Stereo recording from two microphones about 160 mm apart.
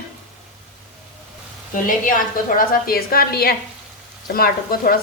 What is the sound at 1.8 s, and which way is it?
A woman's voice, 60° left (ahead or behind).